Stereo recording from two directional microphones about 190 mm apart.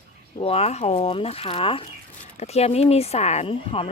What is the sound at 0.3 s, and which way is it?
Speech, 30° left (ahead or behind).